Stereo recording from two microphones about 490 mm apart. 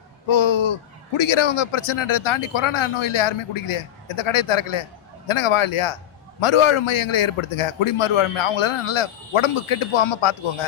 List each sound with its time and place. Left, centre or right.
0.3 s a man's voice: left